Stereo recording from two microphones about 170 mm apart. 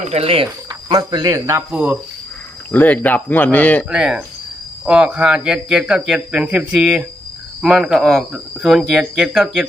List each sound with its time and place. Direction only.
0.0 s speech: 35° right (ahead or behind)
0.4 s speech: 20° right (ahead or behind)
2.7 s speech: 10° left (ahead or behind)
3.8 s speech: 5° right (ahead or behind)